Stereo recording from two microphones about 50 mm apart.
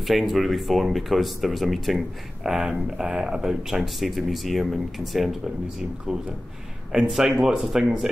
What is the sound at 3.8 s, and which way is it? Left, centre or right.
Speech, centre.